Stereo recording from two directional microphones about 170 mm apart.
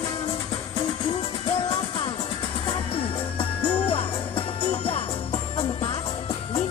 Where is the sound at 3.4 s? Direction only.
35° left (ahead or behind).